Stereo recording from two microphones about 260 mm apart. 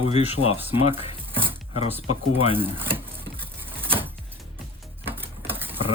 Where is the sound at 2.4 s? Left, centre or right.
Right.